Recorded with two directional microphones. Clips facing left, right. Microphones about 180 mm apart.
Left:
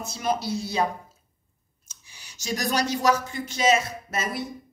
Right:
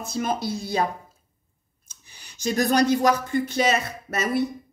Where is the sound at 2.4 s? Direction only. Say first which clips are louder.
Right 6 dB; 55° right (ahead or behind).